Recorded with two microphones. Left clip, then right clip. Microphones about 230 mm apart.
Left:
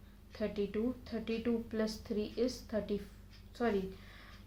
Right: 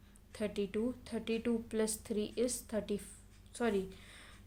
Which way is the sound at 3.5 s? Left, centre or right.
Right.